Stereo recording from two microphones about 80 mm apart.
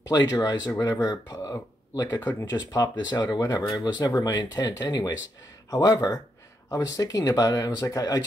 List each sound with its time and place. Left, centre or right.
0.1 s speech: left
3.1 s speech: left